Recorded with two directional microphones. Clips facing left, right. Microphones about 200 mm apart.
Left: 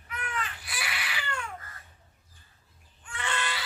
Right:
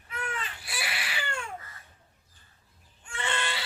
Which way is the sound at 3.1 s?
25° right (ahead or behind).